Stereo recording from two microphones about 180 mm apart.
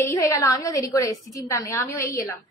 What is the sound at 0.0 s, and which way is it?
A woman's voice, 15° left (ahead or behind).